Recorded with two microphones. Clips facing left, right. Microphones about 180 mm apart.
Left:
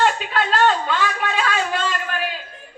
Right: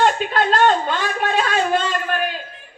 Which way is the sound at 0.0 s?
45° right (ahead or behind).